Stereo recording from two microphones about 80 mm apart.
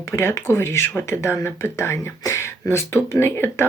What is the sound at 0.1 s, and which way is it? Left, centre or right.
Speech, left.